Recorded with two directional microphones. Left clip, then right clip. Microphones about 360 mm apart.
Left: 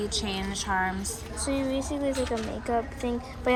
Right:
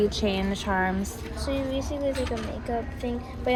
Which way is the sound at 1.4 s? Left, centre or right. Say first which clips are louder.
Even; centre.